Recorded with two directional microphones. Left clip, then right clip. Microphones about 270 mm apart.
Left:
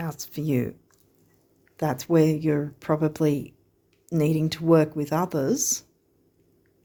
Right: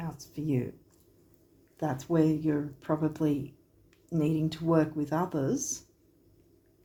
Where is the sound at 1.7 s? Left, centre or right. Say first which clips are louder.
Left 7 dB; left.